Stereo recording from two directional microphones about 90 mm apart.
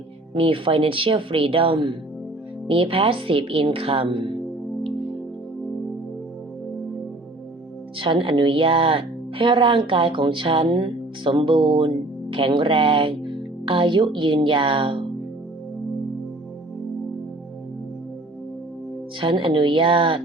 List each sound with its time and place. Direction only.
0.3 s speech: 80° right
2.6 s a woman's voice: 90° right; by 4.3 s 70° right (ahead or behind)
7.9 s speech: 75° right (ahead or behind)
19.2 s speech: 75° right (ahead or behind)